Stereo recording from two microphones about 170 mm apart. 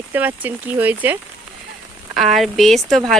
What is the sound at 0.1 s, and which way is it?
Speech, 10° right (ahead or behind).